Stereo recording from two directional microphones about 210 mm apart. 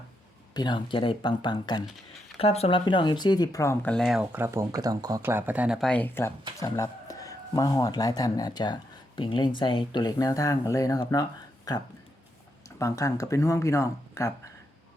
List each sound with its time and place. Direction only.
0.5 s speech: 20° left (ahead or behind)
12.8 s speech: 15° left (ahead or behind)